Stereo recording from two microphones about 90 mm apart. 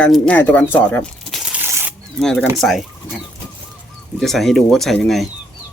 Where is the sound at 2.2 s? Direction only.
5° left (ahead or behind).